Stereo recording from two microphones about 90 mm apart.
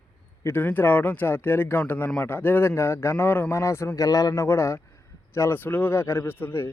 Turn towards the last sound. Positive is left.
turn(degrees=25)  # may be behind; listen again after turning